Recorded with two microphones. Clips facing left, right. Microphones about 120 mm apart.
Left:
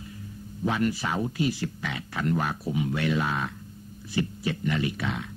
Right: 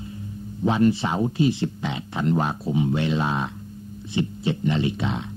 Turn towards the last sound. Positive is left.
turn(degrees=-25)  # may be behind; listen again after turning